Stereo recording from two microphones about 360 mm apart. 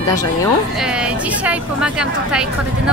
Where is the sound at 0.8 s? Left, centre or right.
Centre.